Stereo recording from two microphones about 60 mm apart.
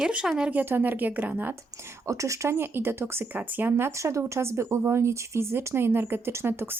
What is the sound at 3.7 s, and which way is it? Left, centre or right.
Speech, right.